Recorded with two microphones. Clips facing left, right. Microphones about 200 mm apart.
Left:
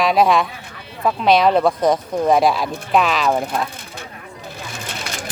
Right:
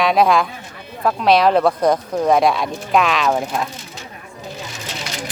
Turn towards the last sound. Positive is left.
turn(degrees=55)  # may be behind; listen again after turning